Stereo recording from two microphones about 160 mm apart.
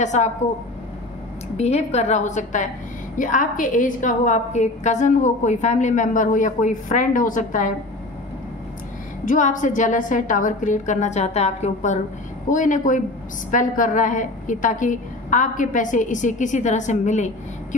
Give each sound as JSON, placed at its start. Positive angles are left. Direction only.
{"t": 0.0, "sound": "a woman's voice", "side_deg": 45}
{"t": 1.6, "sound": "a woman's voice", "side_deg": 40}
{"t": 9.2, "sound": "a woman's voice", "side_deg": 55}